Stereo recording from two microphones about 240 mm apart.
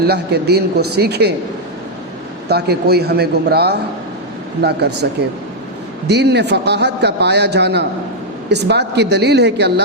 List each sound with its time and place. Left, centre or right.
0.0 s a man's voice: right
2.5 s a man's voice: right
6.1 s a man's voice: right